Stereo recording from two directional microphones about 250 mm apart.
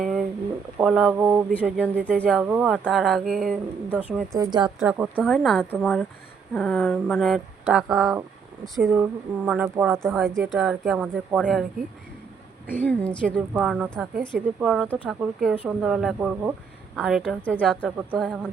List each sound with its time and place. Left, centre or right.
0.0 s a sound: centre
0.8 s speech: centre
4.4 s speech: centre
5.1 s speech: centre
12.6 s a woman's voice: centre
13.3 s speech: centre
17.8 s speech: centre